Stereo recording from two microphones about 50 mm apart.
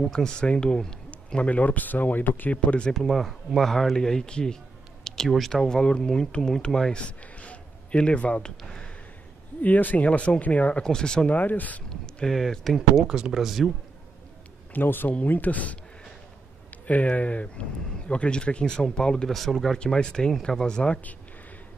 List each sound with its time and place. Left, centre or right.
0.0 s speech: centre
1.1 s speech: left
2.5 s speech: left
2.9 s speech: centre
5.0 s a sound: centre
5.3 s speech: centre
9.6 s speech: left
10.8 s speech: centre
11.3 s speech: left
12.3 s speech: centre
12.7 s speech: centre
14.7 s speech: left; by 19.2 s centre
19.2 s speech: centre
19.8 s speech: centre